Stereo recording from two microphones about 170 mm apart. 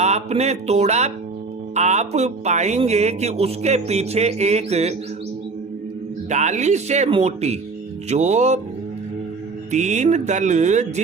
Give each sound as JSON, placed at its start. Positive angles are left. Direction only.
{"t": 0.0, "sound": "music", "side_deg": -40}
{"t": 1.7, "sound": "speech", "side_deg": -40}
{"t": 6.3, "sound": "speech", "side_deg": -45}
{"t": 8.1, "sound": "music", "side_deg": -40}
{"t": 9.7, "sound": "music", "side_deg": -45}